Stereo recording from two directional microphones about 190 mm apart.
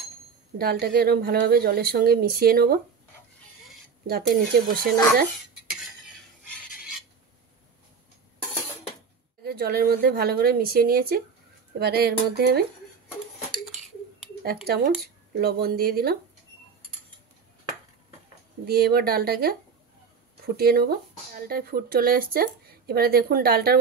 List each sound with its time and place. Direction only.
0.6 s speech: 55° right (ahead or behind)
4.1 s speech: 55° right (ahead or behind)
6.4 s a sound: centre (ahead or behind)
9.4 s speech: 55° right (ahead or behind)
15.3 s speech: 55° right (ahead or behind)
18.7 s speech: 55° right (ahead or behind)